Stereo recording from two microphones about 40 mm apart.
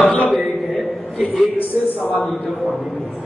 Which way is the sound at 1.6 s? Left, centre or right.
Left.